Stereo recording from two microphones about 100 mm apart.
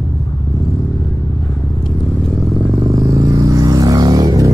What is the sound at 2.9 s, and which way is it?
Vehicle, 35° right (ahead or behind).